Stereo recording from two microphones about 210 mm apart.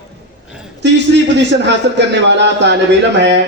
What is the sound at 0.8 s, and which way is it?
A man's voice, 55° right (ahead or behind).